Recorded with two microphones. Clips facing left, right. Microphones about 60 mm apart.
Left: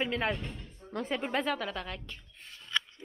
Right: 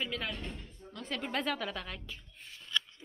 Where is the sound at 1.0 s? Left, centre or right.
Left.